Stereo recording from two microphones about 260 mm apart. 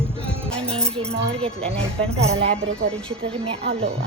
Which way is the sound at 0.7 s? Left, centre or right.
Centre.